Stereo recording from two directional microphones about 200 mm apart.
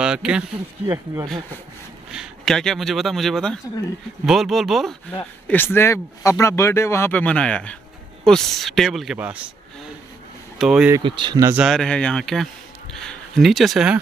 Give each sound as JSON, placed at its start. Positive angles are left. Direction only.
{"t": 0.0, "sound": "speech", "side_deg": -5}
{"t": 2.0, "sound": "speech", "side_deg": 0}
{"t": 5.1, "sound": "speech", "side_deg": 10}
{"t": 10.6, "sound": "speech", "side_deg": -5}
{"t": 11.0, "sound": "speech", "side_deg": -25}
{"t": 11.6, "sound": "speech", "side_deg": 0}